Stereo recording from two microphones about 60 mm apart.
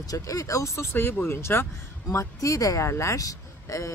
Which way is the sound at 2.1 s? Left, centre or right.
Left.